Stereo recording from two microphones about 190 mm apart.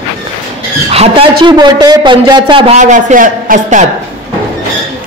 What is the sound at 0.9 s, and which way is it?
A man's voice, 30° right (ahead or behind).